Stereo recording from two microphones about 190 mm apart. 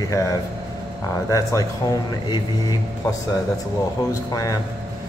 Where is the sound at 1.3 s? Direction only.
20° left (ahead or behind).